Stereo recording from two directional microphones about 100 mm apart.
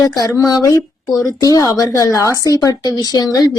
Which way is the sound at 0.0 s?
35° left (ahead or behind).